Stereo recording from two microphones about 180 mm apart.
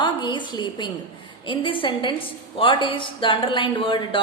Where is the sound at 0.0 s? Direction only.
25° left (ahead or behind).